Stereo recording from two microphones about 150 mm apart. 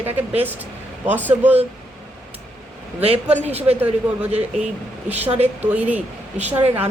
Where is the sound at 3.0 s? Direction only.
45° right (ahead or behind).